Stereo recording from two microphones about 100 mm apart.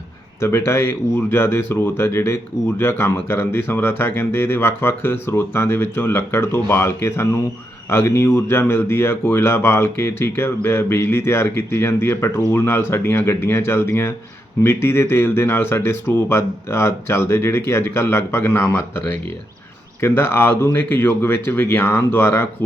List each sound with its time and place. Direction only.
0.4 s speech: 25° left (ahead or behind)